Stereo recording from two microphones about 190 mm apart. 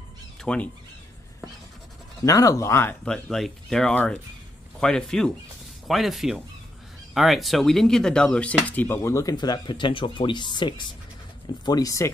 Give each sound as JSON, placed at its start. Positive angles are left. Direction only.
{"t": 0.4, "sound": "speech", "side_deg": 5}
{"t": 2.2, "sound": "speech", "side_deg": 15}